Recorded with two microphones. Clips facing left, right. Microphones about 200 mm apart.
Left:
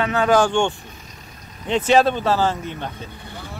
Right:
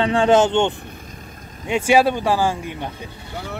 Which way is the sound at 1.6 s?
10° right (ahead or behind).